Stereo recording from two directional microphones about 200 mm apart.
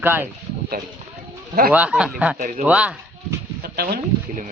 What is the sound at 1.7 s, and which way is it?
Speech, 5° right (ahead or behind).